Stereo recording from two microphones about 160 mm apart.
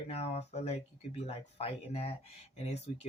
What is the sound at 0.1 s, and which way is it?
Speech, 40° left (ahead or behind).